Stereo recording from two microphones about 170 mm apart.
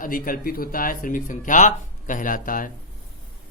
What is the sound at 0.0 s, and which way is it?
Speech, 55° left (ahead or behind).